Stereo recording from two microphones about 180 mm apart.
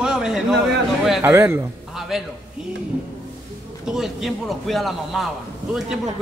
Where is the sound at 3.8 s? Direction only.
Centre (ahead or behind).